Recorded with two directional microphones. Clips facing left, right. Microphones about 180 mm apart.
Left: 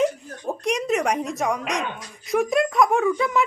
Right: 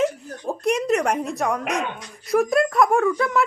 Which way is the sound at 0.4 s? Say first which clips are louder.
Right 2 dB; 5° right (ahead or behind).